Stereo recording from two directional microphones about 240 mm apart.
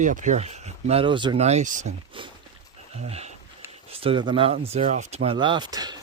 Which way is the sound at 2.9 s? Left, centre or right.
Right.